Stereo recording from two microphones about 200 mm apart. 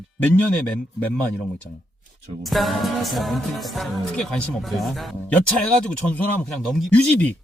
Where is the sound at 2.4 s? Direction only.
Centre (ahead or behind).